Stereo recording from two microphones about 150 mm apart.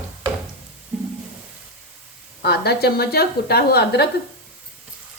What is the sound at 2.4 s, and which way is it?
A woman's voice, 90° left.